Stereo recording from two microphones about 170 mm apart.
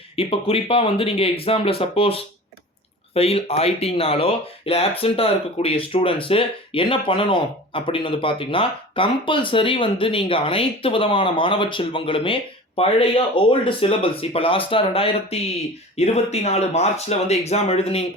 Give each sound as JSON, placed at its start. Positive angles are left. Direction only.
{"t": 0.2, "sound": "speech", "side_deg": 35}